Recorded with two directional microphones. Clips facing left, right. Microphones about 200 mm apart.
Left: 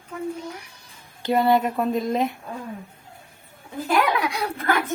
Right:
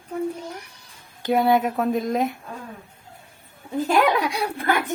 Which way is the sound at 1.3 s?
Centre (ahead or behind).